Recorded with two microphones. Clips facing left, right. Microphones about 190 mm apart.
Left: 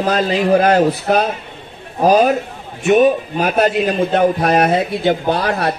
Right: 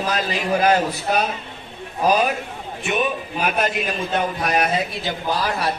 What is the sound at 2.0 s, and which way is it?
A man's voice, 40° left (ahead or behind).